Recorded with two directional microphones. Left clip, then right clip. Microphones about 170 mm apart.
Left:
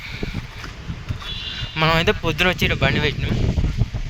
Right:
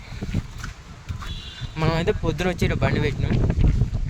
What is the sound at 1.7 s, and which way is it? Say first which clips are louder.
Speech: left 6 dB; centre (ahead or behind).